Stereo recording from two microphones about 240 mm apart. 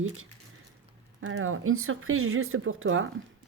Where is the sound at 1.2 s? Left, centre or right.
Right.